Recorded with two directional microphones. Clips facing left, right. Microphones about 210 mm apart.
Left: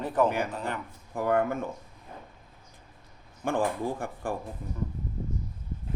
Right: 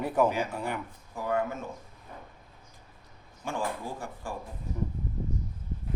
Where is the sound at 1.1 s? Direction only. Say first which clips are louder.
Left 4 dB; 55° left (ahead or behind).